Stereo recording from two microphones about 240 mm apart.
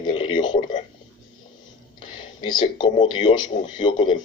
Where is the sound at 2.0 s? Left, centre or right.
Left.